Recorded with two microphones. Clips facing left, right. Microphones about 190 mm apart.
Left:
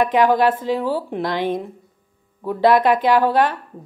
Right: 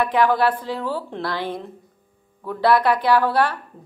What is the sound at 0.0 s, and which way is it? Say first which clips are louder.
Speech: left 3 dB; 15° left (ahead or behind).